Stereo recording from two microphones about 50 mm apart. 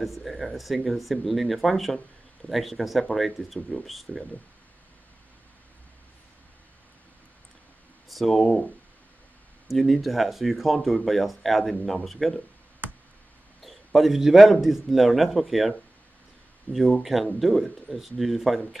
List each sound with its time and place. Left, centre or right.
0.0 s speech: centre
8.1 s speech: centre
9.7 s speech: centre
13.6 s speech: centre
16.7 s speech: left
17.0 s speech: centre